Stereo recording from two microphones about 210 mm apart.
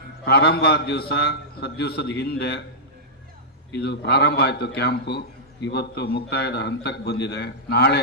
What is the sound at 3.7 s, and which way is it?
A man's voice, 50° left (ahead or behind).